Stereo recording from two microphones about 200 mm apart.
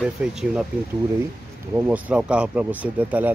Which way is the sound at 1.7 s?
5° right (ahead or behind).